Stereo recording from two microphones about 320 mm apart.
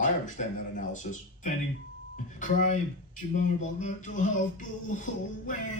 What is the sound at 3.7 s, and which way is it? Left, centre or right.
Speech, left.